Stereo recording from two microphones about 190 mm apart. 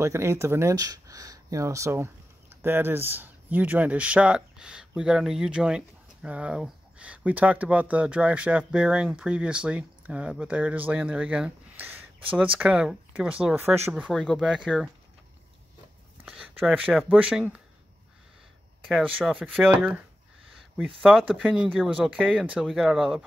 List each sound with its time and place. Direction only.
0.0 s speech: 15° right (ahead or behind); by 14.9 s centre (ahead or behind)
16.3 s a sound: centre (ahead or behind)
17.1 s speech: 5° right (ahead or behind)
18.9 s speech: 5° right (ahead or behind)
21.0 s speech: centre (ahead or behind)